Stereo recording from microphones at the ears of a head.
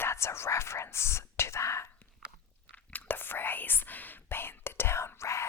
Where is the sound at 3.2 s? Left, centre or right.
Left.